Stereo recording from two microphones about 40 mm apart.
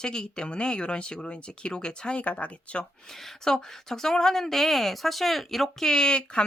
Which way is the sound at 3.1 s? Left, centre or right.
Centre.